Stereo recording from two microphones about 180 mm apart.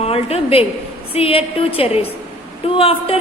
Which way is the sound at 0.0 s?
35° left (ahead or behind).